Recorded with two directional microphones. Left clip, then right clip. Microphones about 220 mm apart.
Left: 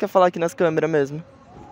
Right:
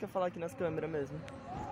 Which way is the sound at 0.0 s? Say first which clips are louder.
Left 18 dB; 50° left (ahead or behind).